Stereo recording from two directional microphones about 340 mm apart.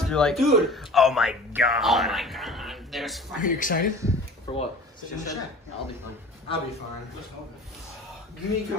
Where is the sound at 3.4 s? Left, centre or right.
Left.